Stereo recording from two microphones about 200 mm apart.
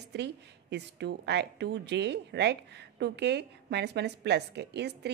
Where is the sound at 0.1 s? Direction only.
60° right (ahead or behind).